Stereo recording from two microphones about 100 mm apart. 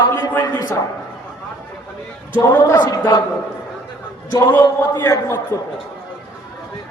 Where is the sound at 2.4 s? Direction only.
40° left (ahead or behind).